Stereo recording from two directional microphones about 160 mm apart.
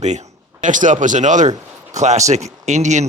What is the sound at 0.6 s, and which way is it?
Speech, 55° right (ahead or behind).